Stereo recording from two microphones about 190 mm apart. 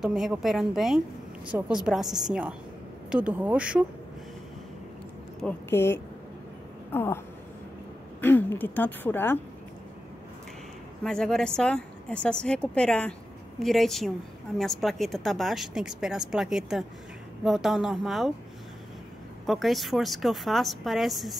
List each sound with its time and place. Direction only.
0.0 s speech: centre (ahead or behind)
5.7 s a woman's voice: 10° left (ahead or behind)
6.9 s a sound: 10° left (ahead or behind)
8.2 s a woman's voice: 10° left (ahead or behind)
11.1 s speech: 5° left (ahead or behind)
19.4 s speech: centre (ahead or behind)